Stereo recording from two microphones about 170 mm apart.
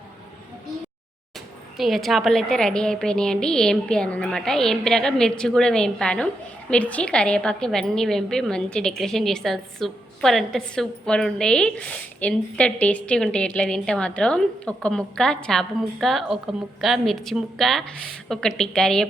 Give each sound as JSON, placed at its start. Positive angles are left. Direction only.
{"t": 1.8, "sound": "a woman's voice", "side_deg": 0}